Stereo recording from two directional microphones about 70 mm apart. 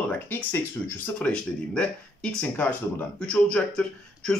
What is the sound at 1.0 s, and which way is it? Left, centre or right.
Speech, centre.